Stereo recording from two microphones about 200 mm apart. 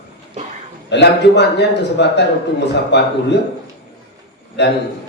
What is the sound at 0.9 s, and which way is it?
A man's voice, 60° left (ahead or behind).